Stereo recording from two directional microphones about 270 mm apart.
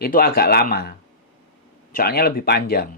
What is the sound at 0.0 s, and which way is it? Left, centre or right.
Speech, left.